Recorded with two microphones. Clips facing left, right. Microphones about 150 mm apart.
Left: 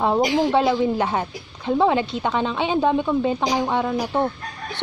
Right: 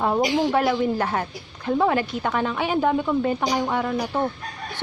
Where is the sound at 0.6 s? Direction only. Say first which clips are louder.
Left 2 dB; 20° left (ahead or behind).